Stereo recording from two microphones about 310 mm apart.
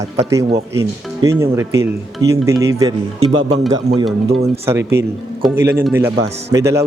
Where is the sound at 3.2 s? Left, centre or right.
Right.